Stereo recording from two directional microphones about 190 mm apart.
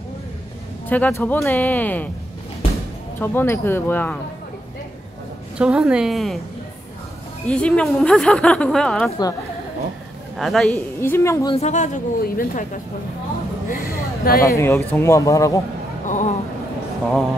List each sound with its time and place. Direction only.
0.8 s speech: 10° left (ahead or behind)
3.2 s speech: 10° left (ahead or behind)
5.6 s a woman's voice: 5° right (ahead or behind)
7.4 s a woman's voice: 5° left (ahead or behind)
10.3 s a woman's voice: centre (ahead or behind)
11.0 s speech: 15° left (ahead or behind)
11.5 s speech: 35° left (ahead or behind)
14.4 s speech: 15° left (ahead or behind)
16.1 s a sound: 40° left (ahead or behind)